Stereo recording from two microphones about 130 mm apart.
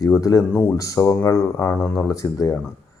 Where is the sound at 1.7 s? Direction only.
5° left (ahead or behind).